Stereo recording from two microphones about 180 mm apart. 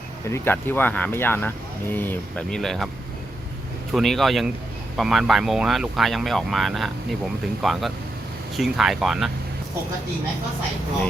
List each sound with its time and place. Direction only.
0.3 s speech: 15° left (ahead or behind)
3.9 s speech: centre (ahead or behind)